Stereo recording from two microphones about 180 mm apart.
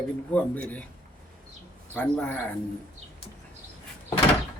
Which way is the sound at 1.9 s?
10° left (ahead or behind).